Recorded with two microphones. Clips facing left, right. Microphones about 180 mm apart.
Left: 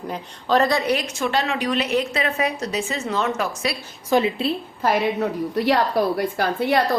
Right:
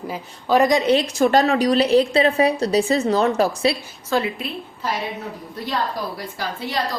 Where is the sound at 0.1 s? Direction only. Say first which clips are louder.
Right 1 dB; 10° right (ahead or behind); by 3.8 s 30° right (ahead or behind).